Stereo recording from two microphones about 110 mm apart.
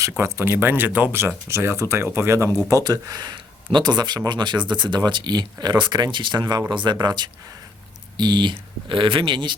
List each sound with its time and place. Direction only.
0.2 s speech: 25° right (ahead or behind)
2.8 s speech: 35° right (ahead or behind)